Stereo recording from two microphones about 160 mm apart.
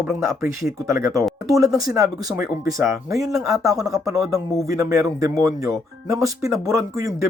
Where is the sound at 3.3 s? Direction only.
Centre (ahead or behind).